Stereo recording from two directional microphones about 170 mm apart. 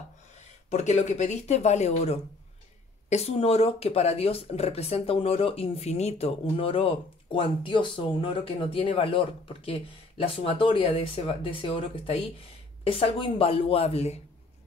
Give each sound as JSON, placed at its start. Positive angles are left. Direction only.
{"t": 0.7, "sound": "speech", "side_deg": 45}